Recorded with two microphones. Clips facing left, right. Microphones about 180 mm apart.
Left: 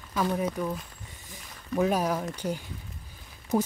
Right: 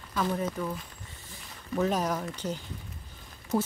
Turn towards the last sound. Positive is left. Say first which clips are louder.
# left 2 dB
turn(degrees=15)  # may be behind; listen again after turning